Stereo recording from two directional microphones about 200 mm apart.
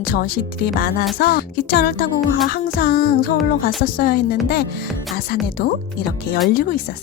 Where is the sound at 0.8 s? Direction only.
50° left (ahead or behind).